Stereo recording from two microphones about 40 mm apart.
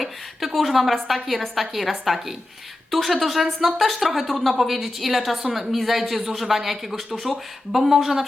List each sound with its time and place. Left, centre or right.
0.0 s a woman's voice: centre